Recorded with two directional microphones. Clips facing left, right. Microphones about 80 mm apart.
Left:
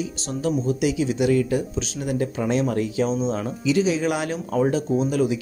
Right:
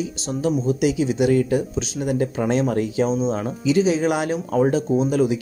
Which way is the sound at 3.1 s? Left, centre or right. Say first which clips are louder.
Right 2 dB; right.